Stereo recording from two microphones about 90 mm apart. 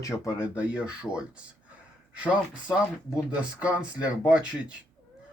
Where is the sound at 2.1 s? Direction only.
15° right (ahead or behind).